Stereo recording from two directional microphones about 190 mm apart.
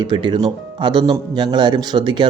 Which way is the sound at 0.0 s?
25° right (ahead or behind).